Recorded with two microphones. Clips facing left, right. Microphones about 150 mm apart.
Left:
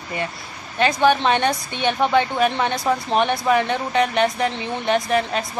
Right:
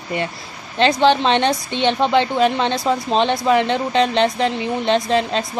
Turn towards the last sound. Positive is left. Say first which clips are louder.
# right 2 dB
turn(degrees=-25)  # may be behind; listen again after turning